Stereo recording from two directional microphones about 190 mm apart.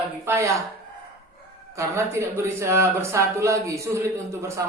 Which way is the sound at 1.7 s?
15° right (ahead or behind).